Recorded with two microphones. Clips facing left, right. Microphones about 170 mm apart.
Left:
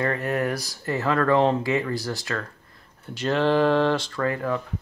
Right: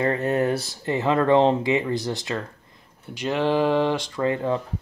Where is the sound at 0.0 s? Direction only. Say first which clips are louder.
Right 3 dB; 25° right (ahead or behind).